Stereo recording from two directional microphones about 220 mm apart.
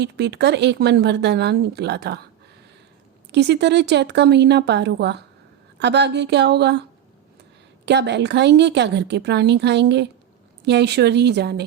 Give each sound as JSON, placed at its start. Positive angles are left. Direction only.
{"t": 0.0, "sound": "speech", "side_deg": -50}
{"t": 3.3, "sound": "speech", "side_deg": -50}
{"t": 7.9, "sound": "speech", "side_deg": -50}